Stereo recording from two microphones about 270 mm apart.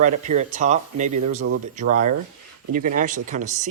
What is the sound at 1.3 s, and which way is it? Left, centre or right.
Speech, right.